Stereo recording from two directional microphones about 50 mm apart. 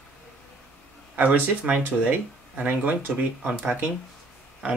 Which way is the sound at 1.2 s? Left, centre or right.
Right.